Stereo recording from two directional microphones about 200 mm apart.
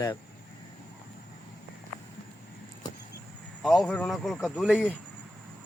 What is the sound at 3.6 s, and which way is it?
Speech, centre (ahead or behind).